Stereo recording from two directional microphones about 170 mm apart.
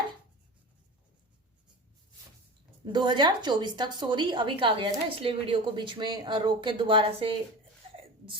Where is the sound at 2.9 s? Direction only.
25° right (ahead or behind).